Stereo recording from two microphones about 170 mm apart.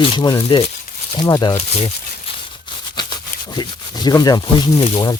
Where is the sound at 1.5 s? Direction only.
35° left (ahead or behind).